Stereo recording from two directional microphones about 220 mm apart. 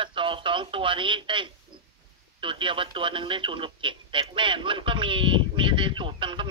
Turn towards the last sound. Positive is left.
turn(degrees=-25)  # may be behind; listen again after turning